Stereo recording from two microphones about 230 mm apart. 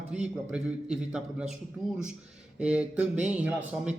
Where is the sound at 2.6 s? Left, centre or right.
Centre.